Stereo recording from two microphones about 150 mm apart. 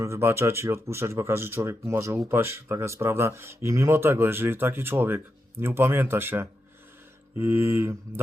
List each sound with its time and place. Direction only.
0.0 s speech: 15° right (ahead or behind)